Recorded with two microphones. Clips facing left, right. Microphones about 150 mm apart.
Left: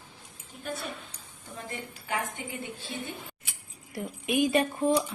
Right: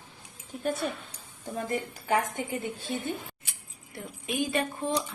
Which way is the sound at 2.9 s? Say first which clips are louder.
Right 4 dB; 40° right (ahead or behind).